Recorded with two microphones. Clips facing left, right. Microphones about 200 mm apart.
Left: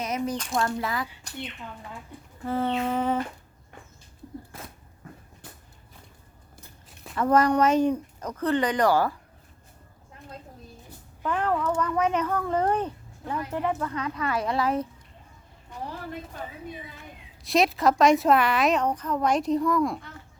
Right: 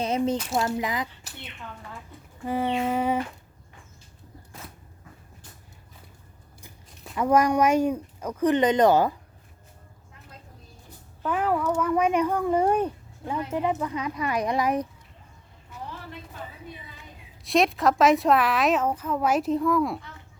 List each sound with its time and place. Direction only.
0.0 s speech: 30° right (ahead or behind)
0.6 s speech: 15° right (ahead or behind)
1.3 s a woman's voice: 5° right (ahead or behind)
7.2 s speech: 10° right (ahead or behind)
11.3 s speech: 5° right (ahead or behind)
17.4 s a woman's voice: centre (ahead or behind)